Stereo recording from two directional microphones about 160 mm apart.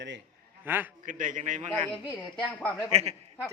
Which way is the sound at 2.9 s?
40° right (ahead or behind).